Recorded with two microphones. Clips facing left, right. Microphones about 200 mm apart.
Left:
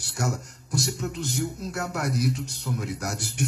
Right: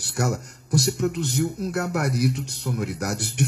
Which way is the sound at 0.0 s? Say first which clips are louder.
Right 4 dB; 65° right (ahead or behind).